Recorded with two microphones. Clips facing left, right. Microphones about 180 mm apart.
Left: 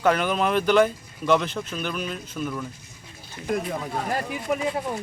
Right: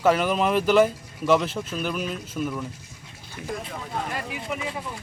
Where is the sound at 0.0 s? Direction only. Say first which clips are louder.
Right 1 dB; 5° right (ahead or behind).